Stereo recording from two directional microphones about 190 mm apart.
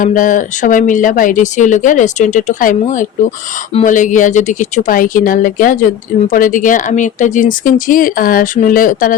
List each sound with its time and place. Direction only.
0.0 s a woman's voice: 45° left (ahead or behind)